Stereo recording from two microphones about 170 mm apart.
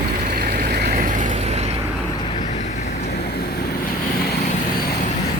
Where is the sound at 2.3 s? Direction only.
45° left (ahead or behind).